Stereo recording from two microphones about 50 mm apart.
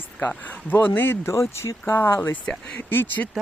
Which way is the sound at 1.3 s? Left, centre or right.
Left.